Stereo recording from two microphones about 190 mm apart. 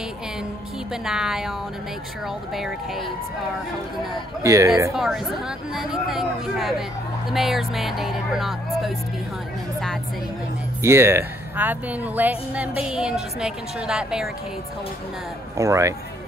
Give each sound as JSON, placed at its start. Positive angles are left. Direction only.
{"t": 1.0, "sound": "speech", "side_deg": -5}
{"t": 2.5, "sound": "speech", "side_deg": 0}
{"t": 4.4, "sound": "a woman's voice", "side_deg": -15}
{"t": 4.9, "sound": "speech", "side_deg": 0}
{"t": 10.8, "sound": "a woman's voice", "side_deg": -15}
{"t": 15.5, "sound": "a woman's voice", "side_deg": -15}